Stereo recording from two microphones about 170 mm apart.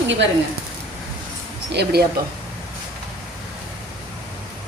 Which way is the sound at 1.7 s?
70° right (ahead or behind).